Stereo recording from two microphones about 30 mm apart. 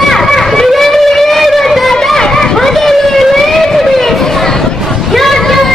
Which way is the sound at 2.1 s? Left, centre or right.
Centre.